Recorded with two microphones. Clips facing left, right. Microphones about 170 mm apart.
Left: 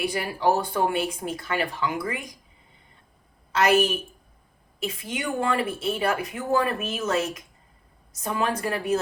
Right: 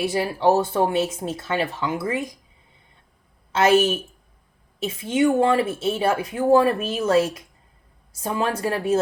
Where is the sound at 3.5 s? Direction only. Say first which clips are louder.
Right 3 dB; 25° right (ahead or behind).